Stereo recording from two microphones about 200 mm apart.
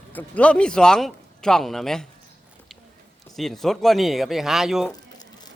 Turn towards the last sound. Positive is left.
turn(degrees=0)  # may be behind; listen again after turning